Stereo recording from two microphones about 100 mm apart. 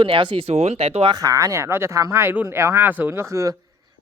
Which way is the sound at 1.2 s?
35° right (ahead or behind).